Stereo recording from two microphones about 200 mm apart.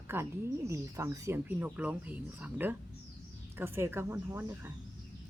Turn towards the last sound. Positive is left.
turn(degrees=-15)  # may be behind; listen again after turning